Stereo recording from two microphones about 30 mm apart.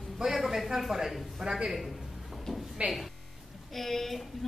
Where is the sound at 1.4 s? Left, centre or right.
Right.